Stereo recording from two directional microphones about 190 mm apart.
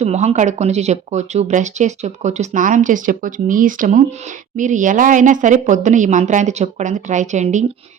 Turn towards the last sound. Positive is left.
turn(degrees=-40)  # may be behind; listen again after turning